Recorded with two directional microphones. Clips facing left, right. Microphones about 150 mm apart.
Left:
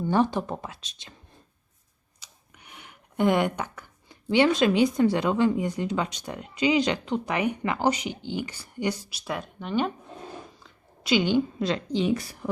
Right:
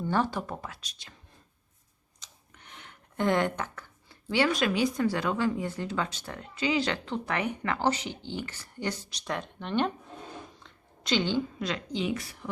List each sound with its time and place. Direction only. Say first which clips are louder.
0.0 s speech: left 5 dB; 15° left (ahead or behind)
2.2 s speech: left 1 dB; 10° left (ahead or behind)
10.6 s a sound: left 1 dB; 10° left (ahead or behind)
11.6 s speech: left 6 dB; 30° left (ahead or behind)